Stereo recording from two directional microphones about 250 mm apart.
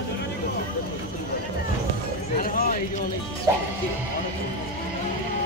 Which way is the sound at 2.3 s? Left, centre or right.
Left.